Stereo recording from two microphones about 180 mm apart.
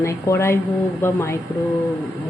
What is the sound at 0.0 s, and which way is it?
Speech, 15° left (ahead or behind).